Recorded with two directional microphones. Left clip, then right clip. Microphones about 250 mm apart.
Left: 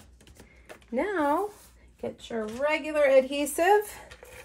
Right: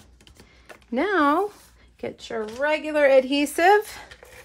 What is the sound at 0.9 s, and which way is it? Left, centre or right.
A woman's voice, right.